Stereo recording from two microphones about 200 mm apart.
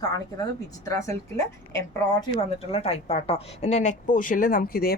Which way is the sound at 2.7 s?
30° left (ahead or behind).